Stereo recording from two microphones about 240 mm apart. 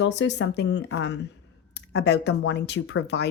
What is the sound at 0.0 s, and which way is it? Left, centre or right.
Speech, left.